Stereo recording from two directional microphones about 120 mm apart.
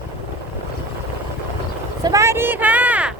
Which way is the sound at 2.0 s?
25° right (ahead or behind).